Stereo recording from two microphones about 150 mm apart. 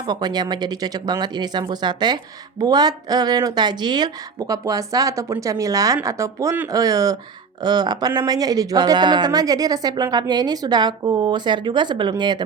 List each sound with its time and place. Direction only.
0.1 s speech: 30° right (ahead or behind)